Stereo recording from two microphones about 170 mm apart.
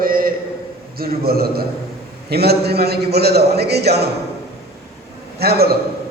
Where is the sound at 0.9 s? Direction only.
65° right (ahead or behind).